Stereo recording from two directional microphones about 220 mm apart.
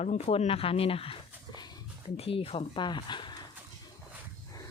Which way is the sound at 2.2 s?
25° left (ahead or behind).